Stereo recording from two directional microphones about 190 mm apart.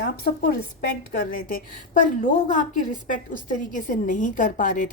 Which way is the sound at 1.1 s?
45° left (ahead or behind).